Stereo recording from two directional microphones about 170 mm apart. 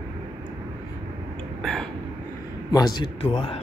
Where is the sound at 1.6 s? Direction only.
5° left (ahead or behind).